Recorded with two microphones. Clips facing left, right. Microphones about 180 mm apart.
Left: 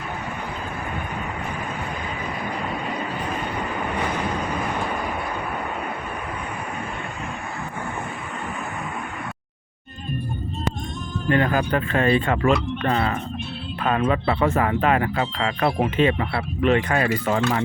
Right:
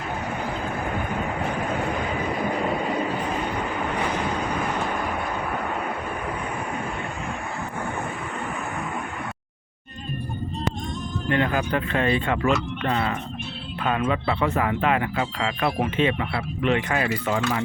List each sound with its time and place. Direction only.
11.3 s speech: 45° left (ahead or behind)